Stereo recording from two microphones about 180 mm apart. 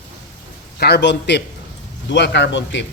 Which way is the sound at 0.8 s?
70° left (ahead or behind).